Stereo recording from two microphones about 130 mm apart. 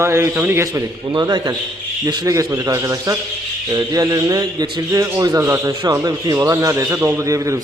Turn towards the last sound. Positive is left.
turn(degrees=-25)  # may be behind; listen again after turning